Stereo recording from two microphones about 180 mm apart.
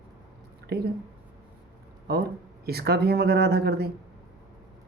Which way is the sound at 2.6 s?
60° right (ahead or behind).